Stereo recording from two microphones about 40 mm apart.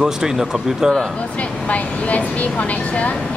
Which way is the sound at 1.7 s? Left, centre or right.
Left.